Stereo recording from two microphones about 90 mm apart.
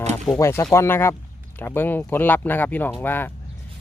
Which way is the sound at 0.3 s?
30° left (ahead or behind).